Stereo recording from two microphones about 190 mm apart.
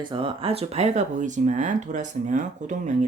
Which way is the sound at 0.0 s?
25° right (ahead or behind).